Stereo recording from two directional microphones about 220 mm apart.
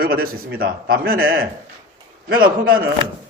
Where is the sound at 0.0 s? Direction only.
45° right (ahead or behind).